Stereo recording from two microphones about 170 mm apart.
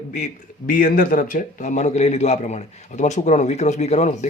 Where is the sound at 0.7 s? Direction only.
55° left (ahead or behind).